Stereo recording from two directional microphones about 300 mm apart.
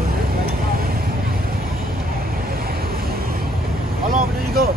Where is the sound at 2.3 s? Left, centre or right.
Right.